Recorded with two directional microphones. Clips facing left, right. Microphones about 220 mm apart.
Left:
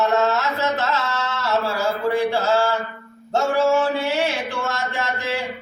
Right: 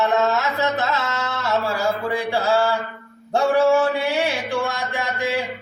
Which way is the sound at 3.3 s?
15° right (ahead or behind).